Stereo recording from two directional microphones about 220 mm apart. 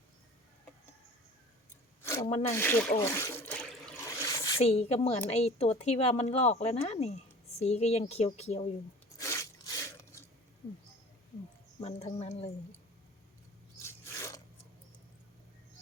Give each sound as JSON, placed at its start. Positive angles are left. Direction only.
{"t": 2.5, "sound": "water", "side_deg": 10}
{"t": 4.5, "sound": "speech", "side_deg": 25}
{"t": 9.1, "sound": "crunch", "side_deg": 15}
{"t": 11.8, "sound": "speech", "side_deg": 30}
{"t": 13.8, "sound": "a sound", "side_deg": 15}